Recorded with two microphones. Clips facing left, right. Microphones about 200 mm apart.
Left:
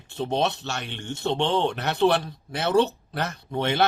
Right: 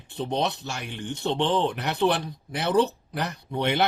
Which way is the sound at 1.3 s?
20° left (ahead or behind).